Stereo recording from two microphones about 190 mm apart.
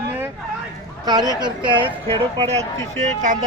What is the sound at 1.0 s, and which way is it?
A man's voice, 20° right (ahead or behind).